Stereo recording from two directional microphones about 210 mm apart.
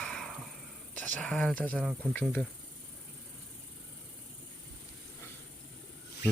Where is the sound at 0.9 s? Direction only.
5° left (ahead or behind).